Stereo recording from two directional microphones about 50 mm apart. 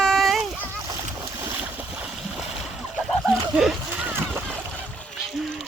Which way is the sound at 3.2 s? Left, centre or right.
Centre.